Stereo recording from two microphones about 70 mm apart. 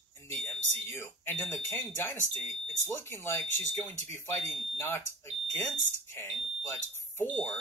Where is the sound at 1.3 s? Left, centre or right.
Left.